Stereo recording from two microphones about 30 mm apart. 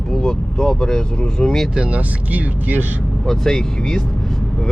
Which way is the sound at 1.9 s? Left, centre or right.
Right.